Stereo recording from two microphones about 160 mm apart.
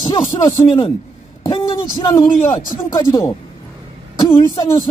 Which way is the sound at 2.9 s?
20° left (ahead or behind).